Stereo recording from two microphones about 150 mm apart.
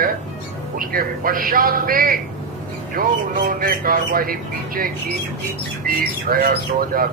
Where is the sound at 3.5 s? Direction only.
75° right (ahead or behind).